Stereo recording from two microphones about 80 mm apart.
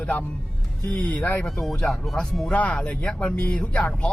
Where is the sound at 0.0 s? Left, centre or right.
Centre.